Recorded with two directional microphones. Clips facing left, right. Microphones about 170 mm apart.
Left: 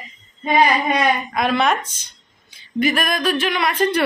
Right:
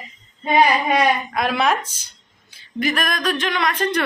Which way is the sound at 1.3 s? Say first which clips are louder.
Left 1 dB; 5° right (ahead or behind).